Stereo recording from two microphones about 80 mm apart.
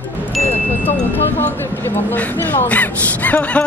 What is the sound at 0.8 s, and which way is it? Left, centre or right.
Speech, left.